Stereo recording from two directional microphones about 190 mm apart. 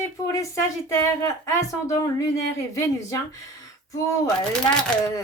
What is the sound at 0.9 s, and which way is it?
Speech, 15° left (ahead or behind).